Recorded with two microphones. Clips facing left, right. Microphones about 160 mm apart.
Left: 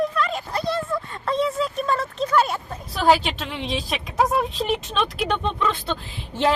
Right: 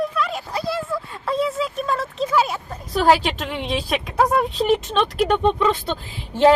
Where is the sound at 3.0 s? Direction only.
Centre (ahead or behind).